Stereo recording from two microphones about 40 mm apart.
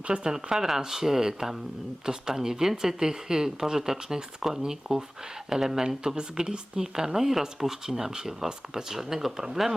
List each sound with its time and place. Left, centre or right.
0.1 s speech: centre
0.5 s speech: centre